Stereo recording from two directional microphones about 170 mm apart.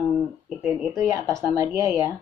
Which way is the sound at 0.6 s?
10° right (ahead or behind).